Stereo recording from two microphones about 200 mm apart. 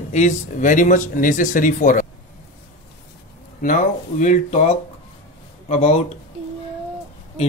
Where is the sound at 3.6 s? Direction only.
40° left (ahead or behind).